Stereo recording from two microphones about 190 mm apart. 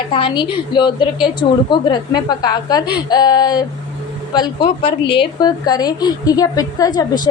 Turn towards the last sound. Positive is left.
turn(degrees=20)  # may be behind; listen again after turning